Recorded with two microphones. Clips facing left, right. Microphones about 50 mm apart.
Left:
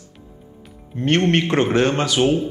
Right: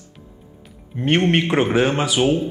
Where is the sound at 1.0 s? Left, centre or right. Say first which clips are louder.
Even; centre.